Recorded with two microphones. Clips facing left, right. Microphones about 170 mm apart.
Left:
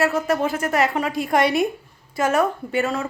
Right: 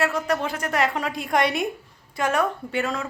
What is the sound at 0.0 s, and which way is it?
A woman's voice, 5° left (ahead or behind).